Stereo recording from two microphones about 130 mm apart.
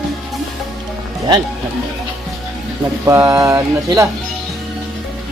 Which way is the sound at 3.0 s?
25° right (ahead or behind).